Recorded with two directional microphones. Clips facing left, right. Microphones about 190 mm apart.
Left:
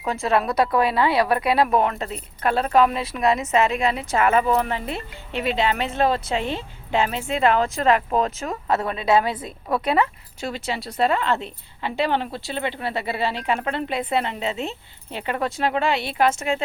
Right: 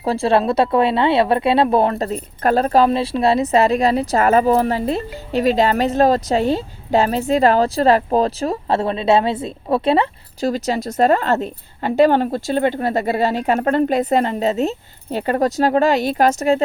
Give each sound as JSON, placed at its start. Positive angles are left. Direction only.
{"t": 0.0, "sound": "speech", "side_deg": -30}